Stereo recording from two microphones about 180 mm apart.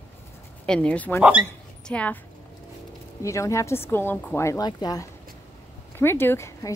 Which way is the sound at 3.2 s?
15° left (ahead or behind).